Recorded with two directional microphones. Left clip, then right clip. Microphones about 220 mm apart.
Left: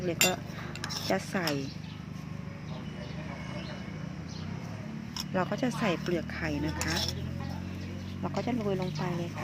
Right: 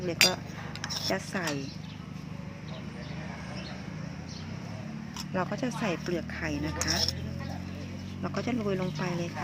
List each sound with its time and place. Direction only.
0.0 s speech: centre (ahead or behind)
1.1 s speech: 10° left (ahead or behind)
5.3 s speech: 5° left (ahead or behind)
8.2 s speech: 5° right (ahead or behind)